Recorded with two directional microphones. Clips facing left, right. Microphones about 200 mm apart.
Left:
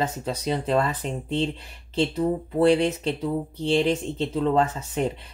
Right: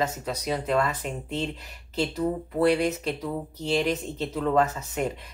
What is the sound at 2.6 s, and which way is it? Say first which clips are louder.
Speech: left 3 dB; 30° left (ahead or behind).